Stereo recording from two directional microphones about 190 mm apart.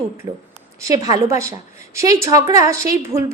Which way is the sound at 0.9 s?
20° right (ahead or behind).